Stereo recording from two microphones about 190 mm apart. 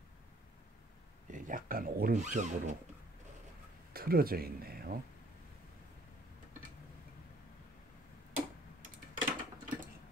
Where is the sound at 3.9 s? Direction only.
50° right (ahead or behind).